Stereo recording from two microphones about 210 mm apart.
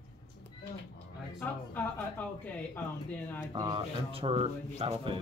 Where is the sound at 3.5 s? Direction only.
20° right (ahead or behind).